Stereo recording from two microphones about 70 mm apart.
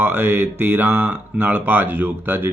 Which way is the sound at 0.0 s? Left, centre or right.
Right.